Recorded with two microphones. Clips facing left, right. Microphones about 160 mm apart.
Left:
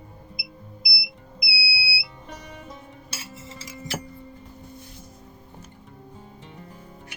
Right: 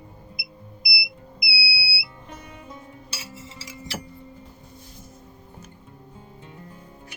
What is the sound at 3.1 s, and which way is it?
Music, 50° left (ahead or behind).